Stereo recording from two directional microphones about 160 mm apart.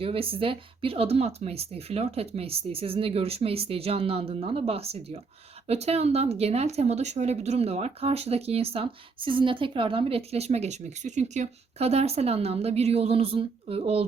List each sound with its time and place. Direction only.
0.0 s speech: 35° right (ahead or behind)